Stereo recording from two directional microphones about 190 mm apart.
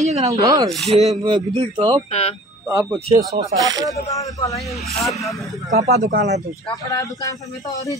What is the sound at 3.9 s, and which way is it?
Speech, 15° left (ahead or behind).